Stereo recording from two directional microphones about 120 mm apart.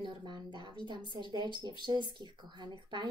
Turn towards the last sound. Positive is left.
turn(degrees=-40)  # may be behind; listen again after turning